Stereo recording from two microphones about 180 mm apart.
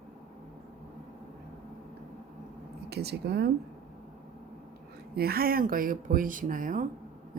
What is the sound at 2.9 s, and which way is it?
Speech, 65° right (ahead or behind).